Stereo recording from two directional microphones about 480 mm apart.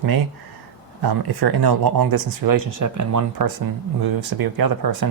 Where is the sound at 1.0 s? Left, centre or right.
Right.